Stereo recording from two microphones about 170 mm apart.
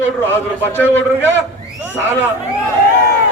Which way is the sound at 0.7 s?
10° left (ahead or behind).